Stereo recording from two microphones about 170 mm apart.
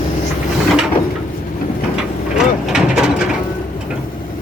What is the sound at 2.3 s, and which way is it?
Mechanisms, 5° right (ahead or behind).